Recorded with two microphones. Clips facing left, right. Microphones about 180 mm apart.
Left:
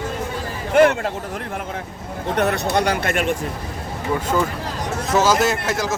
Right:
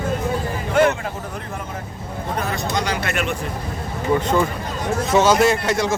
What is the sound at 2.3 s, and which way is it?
Speech, 70° left (ahead or behind).